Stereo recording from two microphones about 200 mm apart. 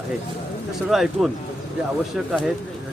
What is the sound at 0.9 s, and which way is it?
Speech, centre (ahead or behind).